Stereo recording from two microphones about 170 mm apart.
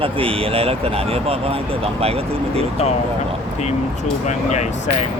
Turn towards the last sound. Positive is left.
turn(degrees=45)  # may be behind; listen again after turning